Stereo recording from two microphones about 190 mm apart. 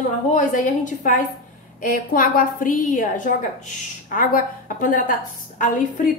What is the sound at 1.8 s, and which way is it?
A woman's voice, 45° left (ahead or behind).